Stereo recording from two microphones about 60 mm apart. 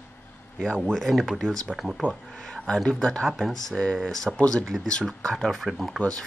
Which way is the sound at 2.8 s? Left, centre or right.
Centre.